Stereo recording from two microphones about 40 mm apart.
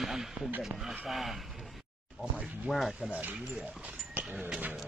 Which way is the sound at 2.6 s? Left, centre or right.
Centre.